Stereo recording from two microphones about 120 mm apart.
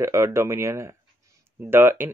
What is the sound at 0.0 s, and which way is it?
Speech, 25° right (ahead or behind).